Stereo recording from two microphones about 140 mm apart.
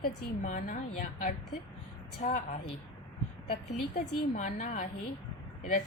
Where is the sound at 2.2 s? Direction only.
55° left (ahead or behind).